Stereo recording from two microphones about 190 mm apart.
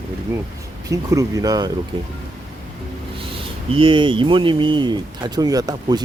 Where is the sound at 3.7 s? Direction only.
25° right (ahead or behind).